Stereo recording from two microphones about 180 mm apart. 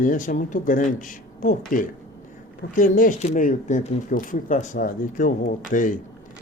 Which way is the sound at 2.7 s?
45° left (ahead or behind).